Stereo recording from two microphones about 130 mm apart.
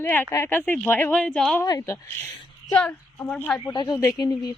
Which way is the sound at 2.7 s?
10° left (ahead or behind).